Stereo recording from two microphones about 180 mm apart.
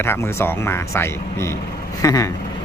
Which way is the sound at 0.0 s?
15° left (ahead or behind).